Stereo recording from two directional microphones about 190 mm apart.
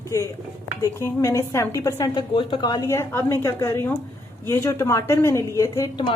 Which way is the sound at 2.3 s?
25° left (ahead or behind).